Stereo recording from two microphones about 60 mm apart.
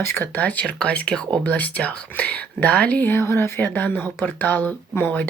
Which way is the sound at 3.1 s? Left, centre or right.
Left.